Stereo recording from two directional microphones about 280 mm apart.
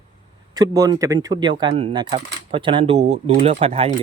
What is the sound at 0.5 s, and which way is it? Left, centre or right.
Speech, centre.